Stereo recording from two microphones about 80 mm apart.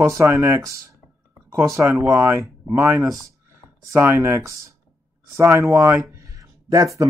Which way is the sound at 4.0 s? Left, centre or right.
Right.